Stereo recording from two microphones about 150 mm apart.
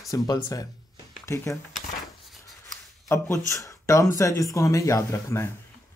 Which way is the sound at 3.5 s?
20° left (ahead or behind).